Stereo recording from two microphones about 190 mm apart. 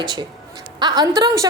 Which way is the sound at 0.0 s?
20° right (ahead or behind).